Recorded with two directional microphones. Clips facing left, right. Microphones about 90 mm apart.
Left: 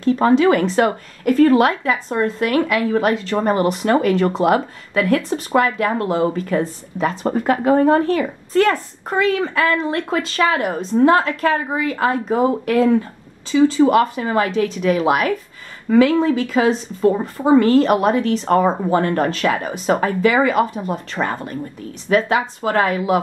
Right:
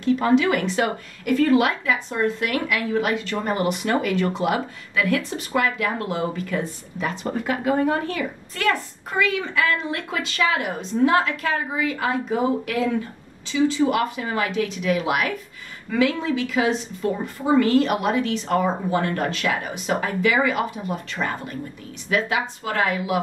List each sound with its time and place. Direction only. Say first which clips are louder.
0.0 s speech: left 5 dB; 35° left (ahead or behind)